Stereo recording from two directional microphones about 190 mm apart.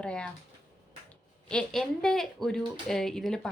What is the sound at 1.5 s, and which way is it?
Speech, 5° left (ahead or behind).